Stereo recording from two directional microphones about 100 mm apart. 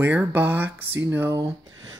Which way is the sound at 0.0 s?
15° right (ahead or behind).